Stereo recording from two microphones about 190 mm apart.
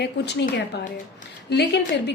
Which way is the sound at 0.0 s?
65° left (ahead or behind).